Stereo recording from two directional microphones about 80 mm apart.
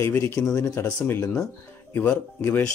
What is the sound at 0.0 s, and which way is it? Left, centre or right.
Speech, left.